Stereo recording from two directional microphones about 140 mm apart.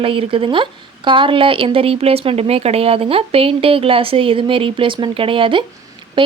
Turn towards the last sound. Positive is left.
turn(degrees=-35)  # may be behind; listen again after turning